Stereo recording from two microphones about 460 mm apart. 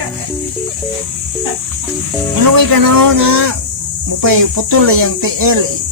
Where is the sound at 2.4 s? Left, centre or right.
Right.